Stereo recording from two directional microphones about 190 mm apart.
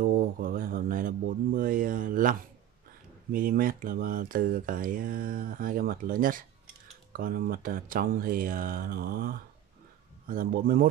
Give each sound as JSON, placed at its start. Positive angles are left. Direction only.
{"t": 0.0, "sound": "speech", "side_deg": -50}
{"t": 3.3, "sound": "speech", "side_deg": -50}